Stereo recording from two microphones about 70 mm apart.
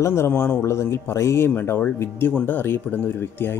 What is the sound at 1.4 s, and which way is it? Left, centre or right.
Speech, left.